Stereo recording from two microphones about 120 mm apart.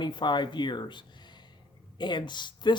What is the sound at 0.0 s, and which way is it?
Speech, 40° left (ahead or behind).